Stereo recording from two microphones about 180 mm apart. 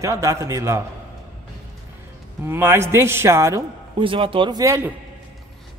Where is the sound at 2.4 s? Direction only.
10° right (ahead or behind).